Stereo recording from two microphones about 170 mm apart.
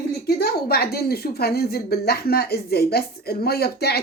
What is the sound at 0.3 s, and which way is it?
A woman's voice, 65° left (ahead or behind).